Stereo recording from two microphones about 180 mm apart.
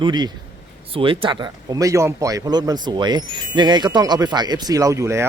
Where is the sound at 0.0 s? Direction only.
25° right (ahead or behind).